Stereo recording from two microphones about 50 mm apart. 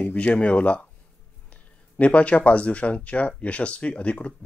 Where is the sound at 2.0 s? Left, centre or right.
Left.